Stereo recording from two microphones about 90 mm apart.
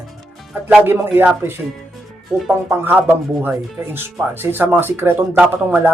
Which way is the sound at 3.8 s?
30° right (ahead or behind).